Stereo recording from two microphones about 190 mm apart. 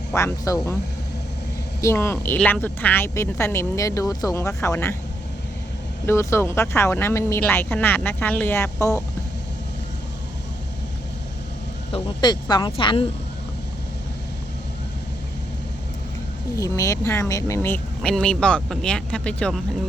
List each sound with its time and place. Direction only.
0.1 s speech: 15° left (ahead or behind)
1.8 s speech: 15° left (ahead or behind)
6.1 s speech: 15° left (ahead or behind)
11.9 s speech: 25° left (ahead or behind)
16.6 s speech: 15° left (ahead or behind)